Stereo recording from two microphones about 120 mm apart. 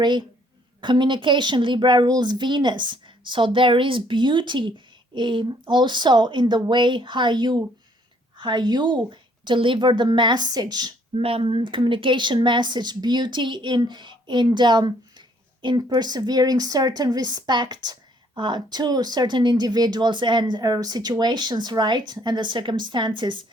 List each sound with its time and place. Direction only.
0.0 s speech: 40° right (ahead or behind)
11.1 s speech: 50° right (ahead or behind)